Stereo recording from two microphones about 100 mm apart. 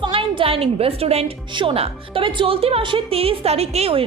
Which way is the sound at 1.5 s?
70° right (ahead or behind).